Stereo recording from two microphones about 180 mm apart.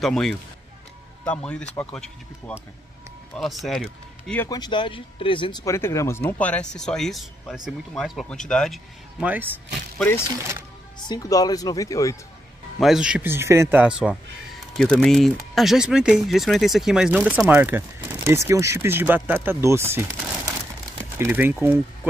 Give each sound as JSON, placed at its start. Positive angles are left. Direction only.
{"t": 0.0, "sound": "speech", "side_deg": 0}
{"t": 4.4, "sound": "speech", "side_deg": 20}
{"t": 11.1, "sound": "speech", "side_deg": 20}
{"t": 12.7, "sound": "speech", "side_deg": 0}